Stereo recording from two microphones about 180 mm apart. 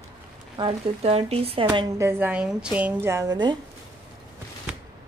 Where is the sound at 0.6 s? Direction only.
30° right (ahead or behind).